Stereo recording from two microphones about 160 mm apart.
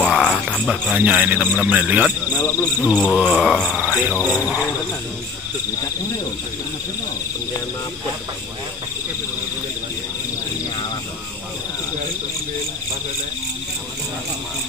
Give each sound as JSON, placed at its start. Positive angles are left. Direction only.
{"t": 0.0, "sound": "speech", "side_deg": 5}
{"t": 2.3, "sound": "speech", "side_deg": 20}
{"t": 3.2, "sound": "speech", "side_deg": 0}
{"t": 3.7, "sound": "speech", "side_deg": -5}